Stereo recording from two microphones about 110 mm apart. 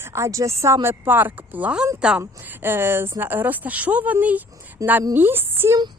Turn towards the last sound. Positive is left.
turn(degrees=-20)  # may be behind; listen again after turning